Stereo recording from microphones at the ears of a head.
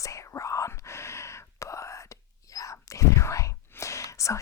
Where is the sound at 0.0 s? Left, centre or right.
Left.